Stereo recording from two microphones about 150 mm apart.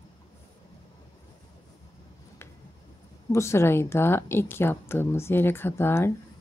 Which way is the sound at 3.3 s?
20° left (ahead or behind).